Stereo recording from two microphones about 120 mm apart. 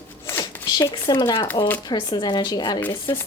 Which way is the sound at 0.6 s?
35° left (ahead or behind).